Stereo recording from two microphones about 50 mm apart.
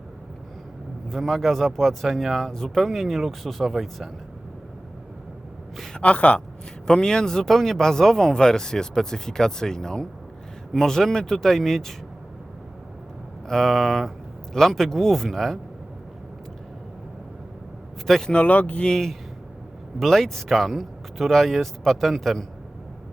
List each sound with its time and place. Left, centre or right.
1.1 s speech: centre
6.0 s speech: left
6.8 s speech: centre
13.5 s speech: centre
18.0 s speech: centre
18.3 s speech: left; by 22.4 s centre